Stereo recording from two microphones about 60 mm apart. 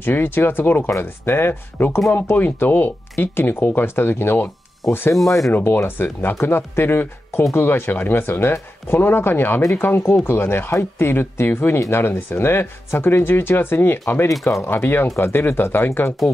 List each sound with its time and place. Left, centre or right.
0.0 s speech: left
5.5 s speech: left
14.4 s speech: left
14.7 s speech: left